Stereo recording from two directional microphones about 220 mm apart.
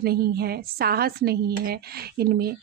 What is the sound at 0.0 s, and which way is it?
A woman's voice, 45° right (ahead or behind).